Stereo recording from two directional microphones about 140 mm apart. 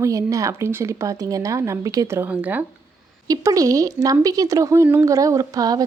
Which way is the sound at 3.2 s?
25° right (ahead or behind).